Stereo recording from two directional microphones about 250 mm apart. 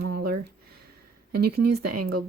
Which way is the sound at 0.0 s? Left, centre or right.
Right.